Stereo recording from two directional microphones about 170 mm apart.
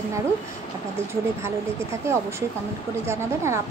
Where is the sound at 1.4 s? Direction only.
15° right (ahead or behind).